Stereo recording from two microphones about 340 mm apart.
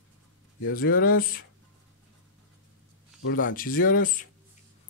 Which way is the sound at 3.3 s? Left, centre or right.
Left.